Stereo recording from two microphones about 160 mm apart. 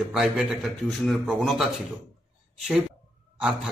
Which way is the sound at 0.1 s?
5° right (ahead or behind).